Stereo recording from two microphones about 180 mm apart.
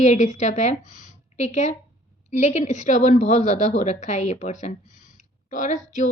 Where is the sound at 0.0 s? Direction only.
40° left (ahead or behind).